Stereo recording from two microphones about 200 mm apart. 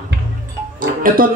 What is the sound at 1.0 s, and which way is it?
Music, 45° right (ahead or behind).